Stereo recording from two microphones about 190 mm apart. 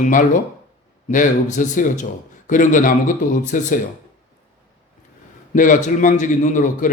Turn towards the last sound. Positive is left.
turn(degrees=40)  # may be behind; listen again after turning